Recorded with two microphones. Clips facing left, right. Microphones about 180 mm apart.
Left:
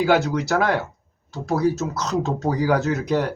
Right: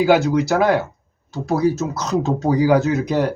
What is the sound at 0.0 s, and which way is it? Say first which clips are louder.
Speech: right 4 dB; 10° right (ahead or behind).